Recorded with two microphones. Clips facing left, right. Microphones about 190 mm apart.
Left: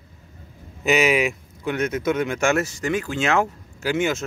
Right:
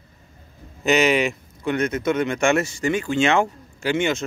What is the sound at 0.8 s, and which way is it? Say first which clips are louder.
Speech: right 1 dB; 5° left (ahead or behind).